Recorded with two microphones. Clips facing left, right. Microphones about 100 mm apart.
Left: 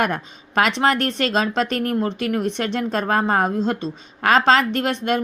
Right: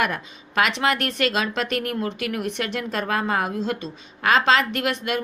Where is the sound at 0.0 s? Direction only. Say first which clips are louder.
Left 3 dB; 35° left (ahead or behind).